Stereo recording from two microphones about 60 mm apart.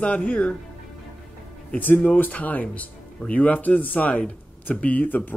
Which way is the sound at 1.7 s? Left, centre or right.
Left.